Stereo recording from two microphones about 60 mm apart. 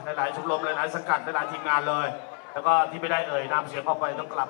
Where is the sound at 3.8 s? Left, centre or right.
Centre.